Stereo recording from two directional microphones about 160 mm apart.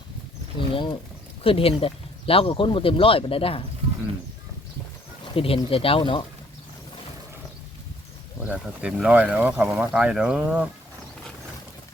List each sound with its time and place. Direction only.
0.7 s speech: 30° left (ahead or behind)
5.2 s speech: 35° left (ahead or behind)
8.4 s speech: 5° right (ahead or behind)